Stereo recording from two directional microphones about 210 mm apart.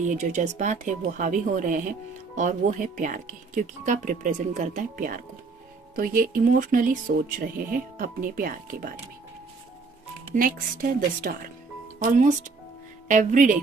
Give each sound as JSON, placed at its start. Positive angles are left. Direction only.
{"t": 0.0, "sound": "speech", "side_deg": -35}
{"t": 10.3, "sound": "speech", "side_deg": -40}